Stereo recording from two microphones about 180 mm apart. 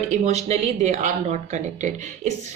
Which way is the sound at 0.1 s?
40° right (ahead or behind).